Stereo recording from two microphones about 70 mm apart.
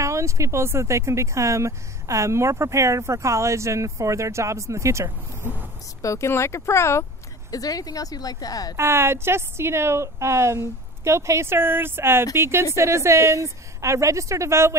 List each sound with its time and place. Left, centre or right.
0.0 s speech: right
5.4 s speech: right
6.0 s speech: left
7.5 s speech: left
8.7 s a woman's voice: right